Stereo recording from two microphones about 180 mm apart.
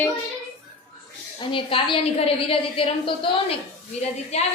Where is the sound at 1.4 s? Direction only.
30° left (ahead or behind).